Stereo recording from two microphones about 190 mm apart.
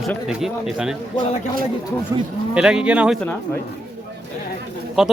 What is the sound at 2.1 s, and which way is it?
Speech, 15° right (ahead or behind).